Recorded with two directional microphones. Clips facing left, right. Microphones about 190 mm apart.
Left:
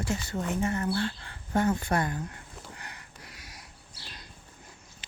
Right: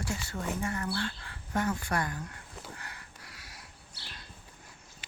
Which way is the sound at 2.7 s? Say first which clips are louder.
Left 1 dB; 20° left (ahead or behind).